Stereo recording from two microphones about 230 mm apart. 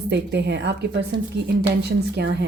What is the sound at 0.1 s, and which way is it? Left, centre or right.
A woman's voice, right.